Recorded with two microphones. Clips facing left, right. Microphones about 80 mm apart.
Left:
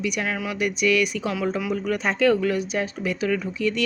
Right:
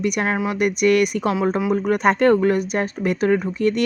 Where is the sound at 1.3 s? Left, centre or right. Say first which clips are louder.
Right 5 dB; right.